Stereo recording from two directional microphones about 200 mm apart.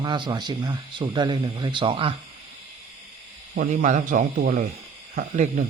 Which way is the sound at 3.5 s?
40° right (ahead or behind).